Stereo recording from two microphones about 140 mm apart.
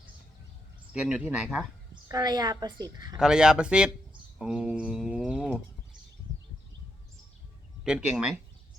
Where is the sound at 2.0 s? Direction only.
30° right (ahead or behind).